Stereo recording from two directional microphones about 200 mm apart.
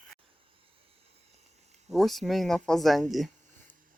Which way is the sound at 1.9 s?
Centre (ahead or behind).